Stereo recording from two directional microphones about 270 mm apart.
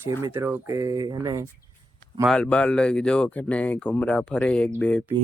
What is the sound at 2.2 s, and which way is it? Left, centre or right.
Speech, centre.